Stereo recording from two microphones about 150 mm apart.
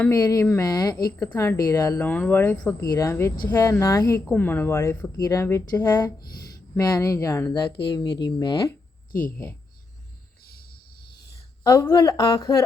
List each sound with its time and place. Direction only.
0.1 s a woman's voice: 25° left (ahead or behind)
10.4 s music: 90° left
11.3 s speech: 20° left (ahead or behind)